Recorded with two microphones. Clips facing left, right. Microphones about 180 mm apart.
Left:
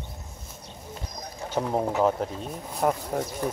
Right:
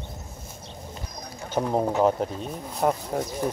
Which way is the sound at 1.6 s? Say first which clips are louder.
Right 2 dB; 20° right (ahead or behind).